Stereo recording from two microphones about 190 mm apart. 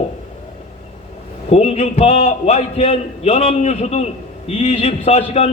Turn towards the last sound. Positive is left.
turn(degrees=35)  # may be behind; listen again after turning